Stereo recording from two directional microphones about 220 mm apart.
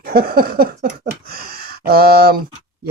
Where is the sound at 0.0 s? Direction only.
45° right (ahead or behind).